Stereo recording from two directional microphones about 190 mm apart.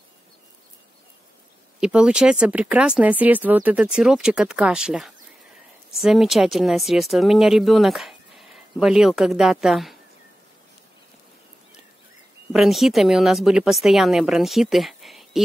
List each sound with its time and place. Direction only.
1.8 s speech: 5° right (ahead or behind)
12.5 s speech: centre (ahead or behind)